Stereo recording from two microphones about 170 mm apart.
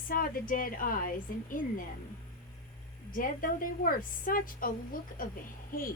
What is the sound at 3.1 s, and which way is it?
A woman's voice, 55° left (ahead or behind).